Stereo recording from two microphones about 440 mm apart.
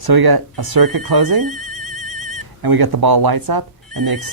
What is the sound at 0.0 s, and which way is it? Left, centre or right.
Speech, right.